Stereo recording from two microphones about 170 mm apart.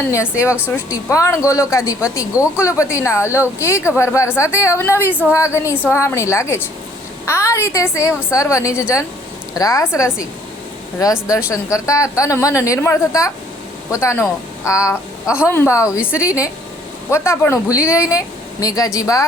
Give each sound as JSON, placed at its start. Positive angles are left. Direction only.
{"t": 0.1, "sound": "a woman's voice", "side_deg": 15}
{"t": 11.5, "sound": "a woman's voice", "side_deg": 20}